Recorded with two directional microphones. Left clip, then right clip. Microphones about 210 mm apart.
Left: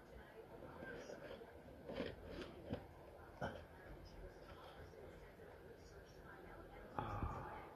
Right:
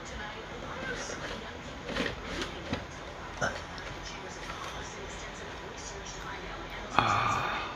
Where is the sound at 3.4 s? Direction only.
45° left (ahead or behind).